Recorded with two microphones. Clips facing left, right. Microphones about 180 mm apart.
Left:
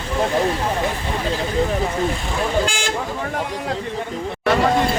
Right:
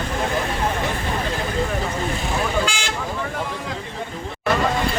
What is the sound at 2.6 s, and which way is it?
Speech, 50° left (ahead or behind).